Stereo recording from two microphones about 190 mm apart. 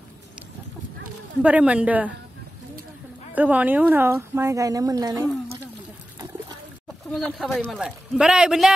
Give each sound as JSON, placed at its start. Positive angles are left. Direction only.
{"t": 1.4, "sound": "speech", "side_deg": -5}
{"t": 3.3, "sound": "speech", "side_deg": -10}
{"t": 7.1, "sound": "a man's voice", "side_deg": 0}
{"t": 7.8, "sound": "a man's voice", "side_deg": -5}